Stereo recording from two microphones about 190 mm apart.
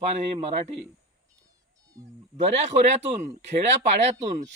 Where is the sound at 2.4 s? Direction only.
35° right (ahead or behind).